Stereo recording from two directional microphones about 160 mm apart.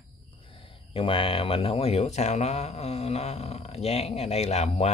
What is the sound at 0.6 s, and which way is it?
Speech, 35° left (ahead or behind).